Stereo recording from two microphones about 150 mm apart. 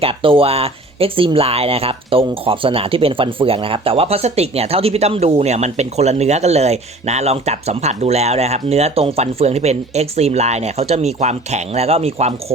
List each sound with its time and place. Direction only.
0.0 s speech: 35° right (ahead or behind)